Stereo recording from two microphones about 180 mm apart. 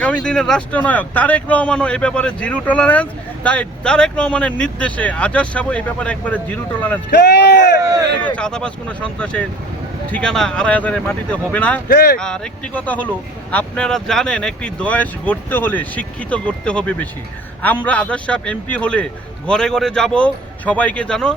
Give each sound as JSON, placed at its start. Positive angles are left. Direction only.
{"t": 0.0, "sound": "speech", "side_deg": 5}
{"t": 7.1, "sound": "speech", "side_deg": 70}
{"t": 8.4, "sound": "speech", "side_deg": 5}
{"t": 11.9, "sound": "speech", "side_deg": 60}
{"t": 12.2, "sound": "speech", "side_deg": 5}